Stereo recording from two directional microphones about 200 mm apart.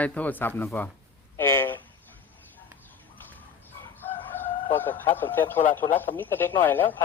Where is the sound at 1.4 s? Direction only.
10° left (ahead or behind).